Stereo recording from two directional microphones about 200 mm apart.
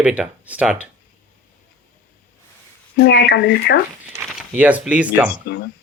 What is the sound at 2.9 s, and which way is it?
Speech, 55° left (ahead or behind).